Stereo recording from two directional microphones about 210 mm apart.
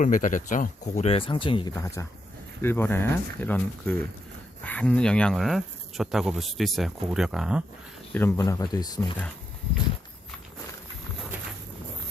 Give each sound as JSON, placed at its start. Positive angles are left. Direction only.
{"t": 0.0, "sound": "speech", "side_deg": 40}
{"t": 8.1, "sound": "speech", "side_deg": 10}